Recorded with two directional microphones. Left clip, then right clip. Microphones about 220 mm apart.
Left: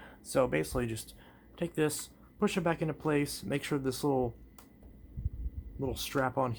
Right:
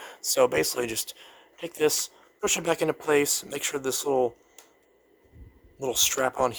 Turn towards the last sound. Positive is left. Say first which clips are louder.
# right 6 dB
turn(degrees=-40)  # may be behind; listen again after turning